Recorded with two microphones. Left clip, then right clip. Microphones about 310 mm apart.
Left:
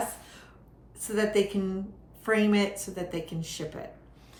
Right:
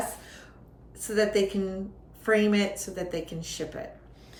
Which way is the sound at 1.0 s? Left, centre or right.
Centre.